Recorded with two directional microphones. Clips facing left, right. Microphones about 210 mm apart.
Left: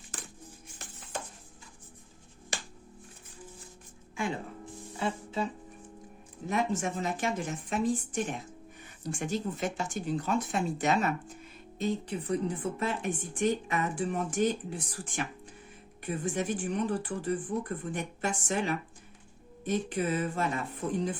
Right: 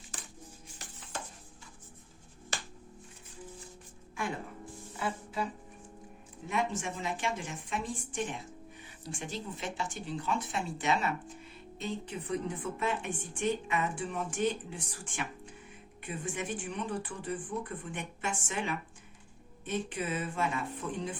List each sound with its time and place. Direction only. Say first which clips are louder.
2.5 s finger snapping: left 1 dB; 15° left (ahead or behind)
4.9 s music: left 3 dB; 25° left (ahead or behind)
6.5 s speech: left 4 dB; 45° left (ahead or behind)